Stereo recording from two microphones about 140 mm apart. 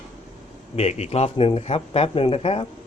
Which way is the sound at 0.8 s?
50° left (ahead or behind).